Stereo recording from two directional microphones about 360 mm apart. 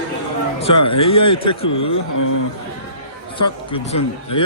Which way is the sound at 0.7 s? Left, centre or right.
Left.